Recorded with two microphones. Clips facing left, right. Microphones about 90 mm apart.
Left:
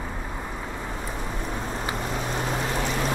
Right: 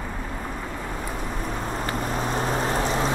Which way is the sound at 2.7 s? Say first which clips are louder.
Right 3 dB; 35° right (ahead or behind).